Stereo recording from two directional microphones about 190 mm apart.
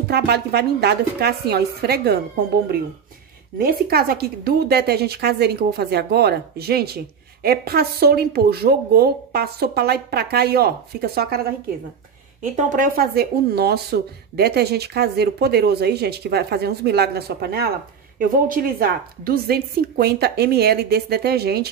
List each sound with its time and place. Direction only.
0.1 s speech: 60° right (ahead or behind)
3.5 s speech: 55° right (ahead or behind)
12.4 s speech: 45° right (ahead or behind)